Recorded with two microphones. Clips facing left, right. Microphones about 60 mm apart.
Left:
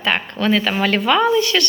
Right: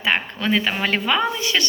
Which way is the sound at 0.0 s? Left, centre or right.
Centre.